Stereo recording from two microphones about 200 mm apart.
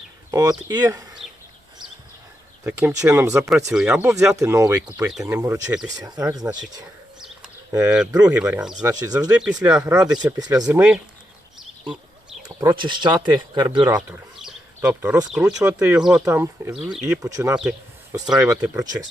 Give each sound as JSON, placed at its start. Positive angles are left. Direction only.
{"t": 0.3, "sound": "speech", "side_deg": -15}
{"t": 2.6, "sound": "speech", "side_deg": -15}
{"t": 7.7, "sound": "speech", "side_deg": -10}
{"t": 8.8, "sound": "speech", "side_deg": -20}
{"t": 9.3, "sound": "speech", "side_deg": -5}
{"t": 11.6, "sound": "a sound", "side_deg": 0}
{"t": 12.5, "sound": "speech", "side_deg": -25}
{"t": 17.2, "sound": "speech", "side_deg": -15}